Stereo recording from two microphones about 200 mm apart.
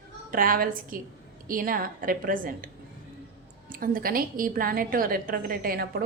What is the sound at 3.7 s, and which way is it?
A woman's voice, 45° right (ahead or behind).